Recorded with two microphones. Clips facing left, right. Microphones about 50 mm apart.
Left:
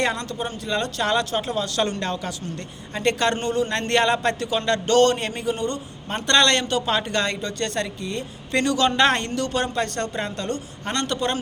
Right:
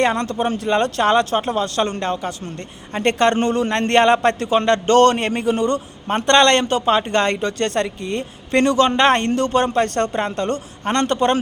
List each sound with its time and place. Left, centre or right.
0.0 s speech: right
2.9 s a man's voice: right
6.1 s speech: right